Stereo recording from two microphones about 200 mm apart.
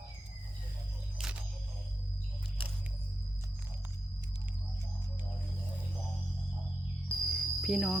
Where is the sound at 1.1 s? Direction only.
5° right (ahead or behind).